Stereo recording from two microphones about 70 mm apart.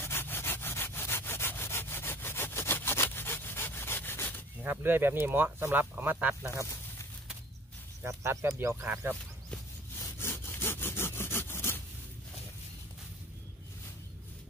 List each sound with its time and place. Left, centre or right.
0.0 s sawing: left
4.6 s speech: right
6.5 s a sound: left
8.1 s speech: right
8.5 s speech: right
10.1 s sawing: left